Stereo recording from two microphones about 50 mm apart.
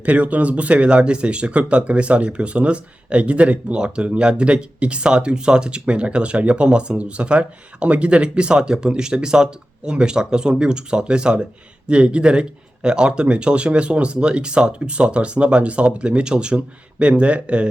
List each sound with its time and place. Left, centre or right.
0.0 s speech: right